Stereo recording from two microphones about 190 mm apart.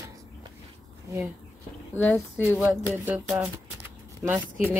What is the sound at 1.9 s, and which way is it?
Speech, 10° left (ahead or behind).